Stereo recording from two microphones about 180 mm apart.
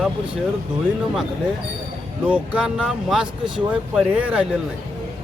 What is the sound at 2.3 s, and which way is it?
Speech, 5° right (ahead or behind).